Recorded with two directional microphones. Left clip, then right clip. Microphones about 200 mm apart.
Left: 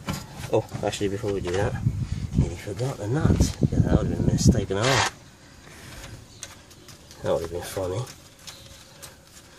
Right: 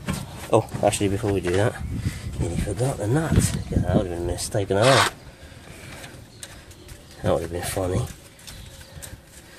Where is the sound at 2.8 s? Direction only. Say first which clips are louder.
Right 3 dB; 25° right (ahead or behind).